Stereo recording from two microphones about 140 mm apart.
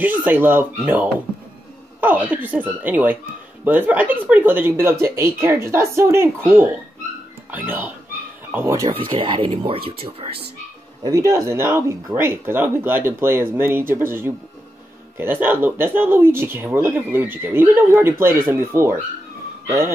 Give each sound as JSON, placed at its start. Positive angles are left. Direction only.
{"t": 0.0, "sound": "speech", "side_deg": -15}
{"t": 8.8, "sound": "speech", "side_deg": -35}
{"t": 11.1, "sound": "speech", "side_deg": -20}